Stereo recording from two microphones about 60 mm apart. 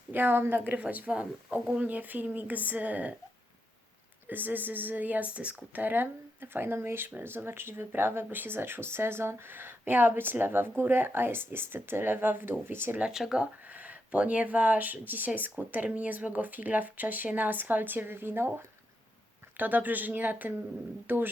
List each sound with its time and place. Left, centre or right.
0.1 s speech: right
4.3 s speech: right
13.0 s speech: centre
13.7 s speech: right
19.5 s speech: right